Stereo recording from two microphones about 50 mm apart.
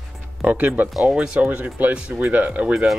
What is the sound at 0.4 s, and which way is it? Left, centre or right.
Speech, right.